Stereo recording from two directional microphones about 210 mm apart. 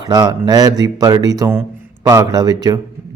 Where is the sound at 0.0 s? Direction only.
20° right (ahead or behind).